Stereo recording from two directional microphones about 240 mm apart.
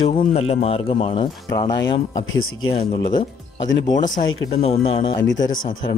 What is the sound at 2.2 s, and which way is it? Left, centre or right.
Speech, left.